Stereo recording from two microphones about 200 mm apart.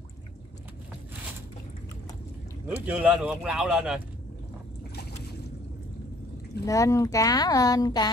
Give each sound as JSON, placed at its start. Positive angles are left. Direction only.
{"t": 2.8, "sound": "speech", "side_deg": -5}
{"t": 6.6, "sound": "speech", "side_deg": 15}